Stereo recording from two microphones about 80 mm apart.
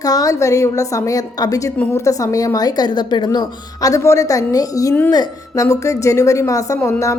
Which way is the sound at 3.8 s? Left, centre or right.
Left.